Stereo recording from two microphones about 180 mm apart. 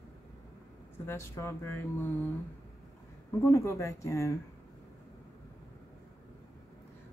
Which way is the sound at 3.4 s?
15° left (ahead or behind).